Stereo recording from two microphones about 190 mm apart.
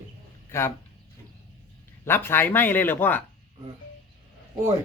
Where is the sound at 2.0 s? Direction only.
10° left (ahead or behind).